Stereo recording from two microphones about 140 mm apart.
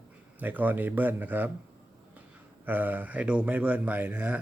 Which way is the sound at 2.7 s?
10° right (ahead or behind).